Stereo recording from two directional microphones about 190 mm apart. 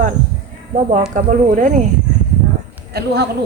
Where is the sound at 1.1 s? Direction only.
40° right (ahead or behind).